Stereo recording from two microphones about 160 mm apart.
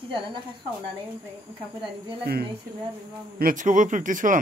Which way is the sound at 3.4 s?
55° right (ahead or behind).